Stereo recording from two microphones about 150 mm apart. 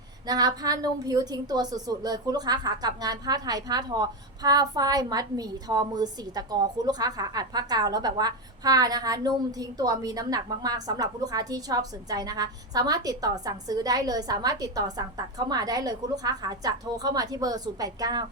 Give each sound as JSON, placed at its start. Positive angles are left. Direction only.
{"t": 0.3, "sound": "a woman's voice", "side_deg": -25}